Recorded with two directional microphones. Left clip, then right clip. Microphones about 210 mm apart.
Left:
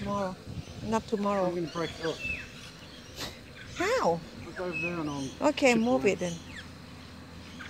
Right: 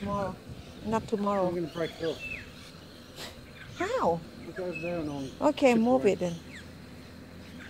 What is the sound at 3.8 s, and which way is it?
Cat, 10° right (ahead or behind).